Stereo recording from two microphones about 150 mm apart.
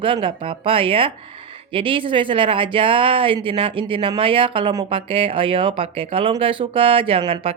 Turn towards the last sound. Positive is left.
turn(degrees=-35)  # may be behind; listen again after turning